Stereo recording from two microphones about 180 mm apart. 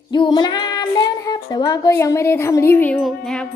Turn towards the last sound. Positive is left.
turn(degrees=5)  # may be behind; listen again after turning